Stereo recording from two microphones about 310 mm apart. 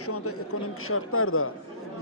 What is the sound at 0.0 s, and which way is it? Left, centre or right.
A man's voice, left.